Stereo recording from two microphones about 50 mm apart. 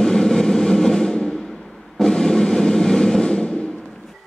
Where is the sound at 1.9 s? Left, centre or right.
Centre.